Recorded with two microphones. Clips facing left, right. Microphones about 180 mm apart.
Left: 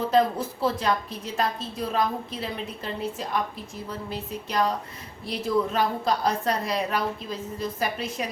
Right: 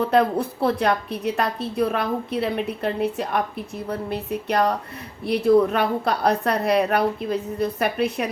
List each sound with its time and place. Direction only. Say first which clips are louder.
0.1 s a woman's voice: right 3 dB; 60° right (ahead or behind)